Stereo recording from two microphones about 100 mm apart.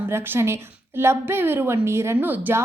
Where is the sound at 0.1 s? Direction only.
25° right (ahead or behind).